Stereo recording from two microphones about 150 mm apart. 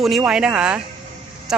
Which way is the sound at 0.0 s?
Centre (ahead or behind).